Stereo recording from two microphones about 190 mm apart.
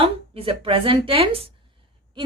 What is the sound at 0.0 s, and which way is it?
A woman's voice, 30° right (ahead or behind).